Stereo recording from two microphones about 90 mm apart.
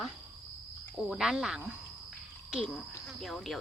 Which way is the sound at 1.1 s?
5° right (ahead or behind).